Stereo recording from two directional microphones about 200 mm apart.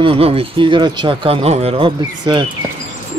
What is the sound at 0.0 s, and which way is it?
Speech, 30° right (ahead or behind).